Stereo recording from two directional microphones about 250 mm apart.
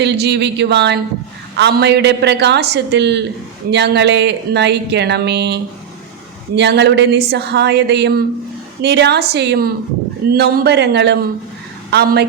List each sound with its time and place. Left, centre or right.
0.0 s a woman's voice: right
6.6 s a woman's voice: right